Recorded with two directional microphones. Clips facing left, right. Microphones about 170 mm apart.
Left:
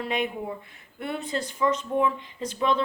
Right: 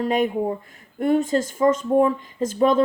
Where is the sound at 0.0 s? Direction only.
40° right (ahead or behind).